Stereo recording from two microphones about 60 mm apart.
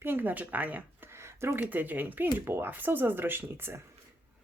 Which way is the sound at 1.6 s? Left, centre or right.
Right.